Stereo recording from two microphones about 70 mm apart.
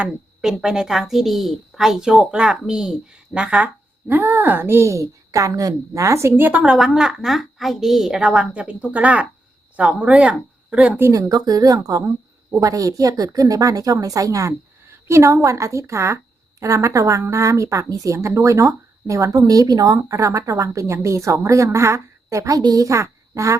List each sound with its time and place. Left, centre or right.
0.4 s a woman's voice: centre
4.1 s a woman's voice: right
6.4 s a woman's voice: centre
6.7 s a woman's voice: centre
11.1 s a woman's voice: right
14.8 s a sound: right
15.4 s a woman's voice: right
20.1 s a woman's voice: right